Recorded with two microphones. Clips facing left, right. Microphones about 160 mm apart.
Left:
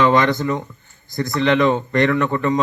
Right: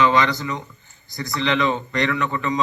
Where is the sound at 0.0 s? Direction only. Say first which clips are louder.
Left 3 dB; 50° left (ahead or behind).